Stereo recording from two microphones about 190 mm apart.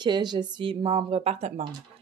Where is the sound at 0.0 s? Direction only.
25° right (ahead or behind).